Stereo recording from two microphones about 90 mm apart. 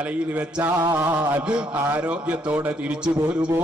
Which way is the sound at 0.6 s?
25° right (ahead or behind).